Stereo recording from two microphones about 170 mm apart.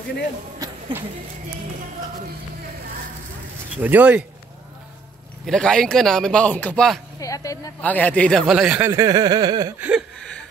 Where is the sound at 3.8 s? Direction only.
10° right (ahead or behind).